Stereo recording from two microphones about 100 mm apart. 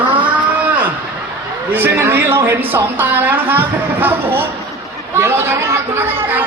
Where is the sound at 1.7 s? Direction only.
20° right (ahead or behind).